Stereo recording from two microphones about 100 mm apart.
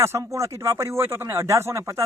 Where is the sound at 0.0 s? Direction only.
30° right (ahead or behind).